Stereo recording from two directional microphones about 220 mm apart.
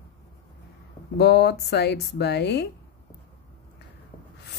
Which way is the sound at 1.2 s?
50° left (ahead or behind).